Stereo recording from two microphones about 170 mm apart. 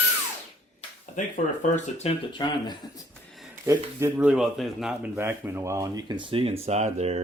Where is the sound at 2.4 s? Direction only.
25° left (ahead or behind).